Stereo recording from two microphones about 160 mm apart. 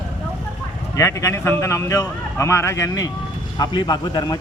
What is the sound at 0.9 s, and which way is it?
A man's voice, 20° left (ahead or behind).